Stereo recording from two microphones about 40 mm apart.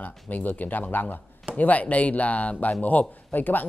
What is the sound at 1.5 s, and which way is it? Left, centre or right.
Speech, left.